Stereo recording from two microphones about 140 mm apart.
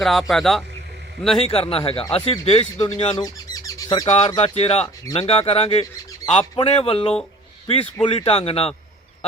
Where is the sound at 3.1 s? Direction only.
25° left (ahead or behind).